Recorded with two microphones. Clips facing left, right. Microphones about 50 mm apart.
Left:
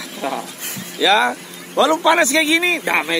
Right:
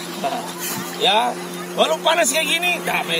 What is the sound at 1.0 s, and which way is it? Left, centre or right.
A man's voice, left.